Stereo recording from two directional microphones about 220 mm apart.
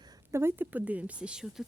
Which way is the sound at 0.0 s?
15° right (ahead or behind).